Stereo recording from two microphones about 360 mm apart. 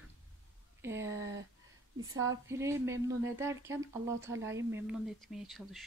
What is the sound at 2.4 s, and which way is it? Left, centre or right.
Speech, centre.